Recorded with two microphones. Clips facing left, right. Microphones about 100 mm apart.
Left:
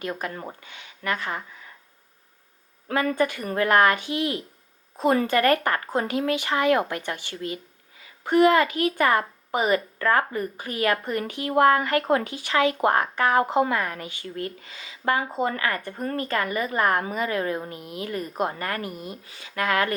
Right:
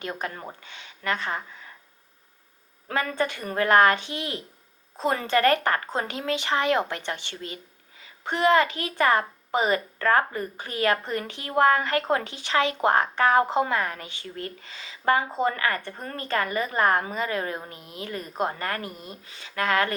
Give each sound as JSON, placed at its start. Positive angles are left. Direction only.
{"t": 0.0, "sound": "a child's voice", "side_deg": -25}
{"t": 2.9, "sound": "a child's voice", "side_deg": -25}